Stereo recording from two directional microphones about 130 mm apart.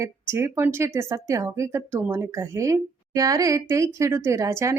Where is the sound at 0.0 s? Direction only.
20° right (ahead or behind).